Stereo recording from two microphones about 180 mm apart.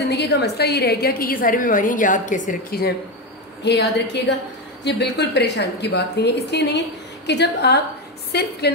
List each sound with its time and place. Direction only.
0.1 s a woman's voice: 65° left (ahead or behind); by 2.9 s 50° left (ahead or behind)
3.6 s a woman's voice: 70° left (ahead or behind)